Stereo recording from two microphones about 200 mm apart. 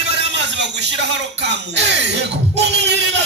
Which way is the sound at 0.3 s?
60° right (ahead or behind).